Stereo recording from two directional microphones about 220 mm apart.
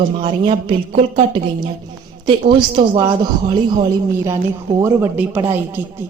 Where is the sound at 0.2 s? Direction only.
25° right (ahead or behind).